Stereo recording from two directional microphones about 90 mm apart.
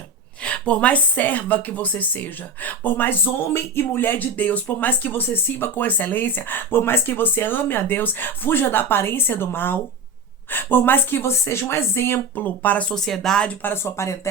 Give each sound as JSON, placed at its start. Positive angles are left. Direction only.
{"t": 0.4, "sound": "a woman's voice", "side_deg": 15}
{"t": 12.9, "sound": "speech", "side_deg": 5}